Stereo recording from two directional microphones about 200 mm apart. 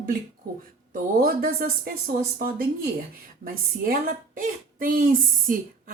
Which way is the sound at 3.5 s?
45° right (ahead or behind).